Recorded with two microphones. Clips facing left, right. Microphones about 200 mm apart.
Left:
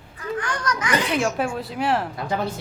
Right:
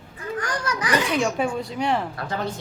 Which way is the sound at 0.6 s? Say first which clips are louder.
Left 1 dB; 25° right (ahead or behind).